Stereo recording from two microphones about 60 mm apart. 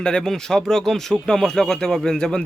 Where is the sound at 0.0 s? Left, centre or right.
Centre.